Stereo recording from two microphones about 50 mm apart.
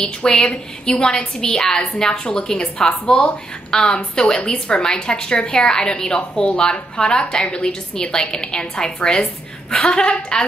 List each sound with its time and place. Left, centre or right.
0.0 s a woman's voice: centre